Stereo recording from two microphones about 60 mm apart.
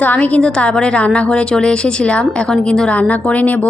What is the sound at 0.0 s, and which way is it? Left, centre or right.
A woman's voice, left.